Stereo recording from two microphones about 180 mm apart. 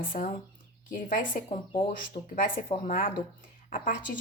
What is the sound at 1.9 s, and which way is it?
A woman's voice, 50° left (ahead or behind).